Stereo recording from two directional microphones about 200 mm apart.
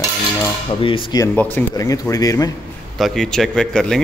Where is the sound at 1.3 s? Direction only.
10° left (ahead or behind).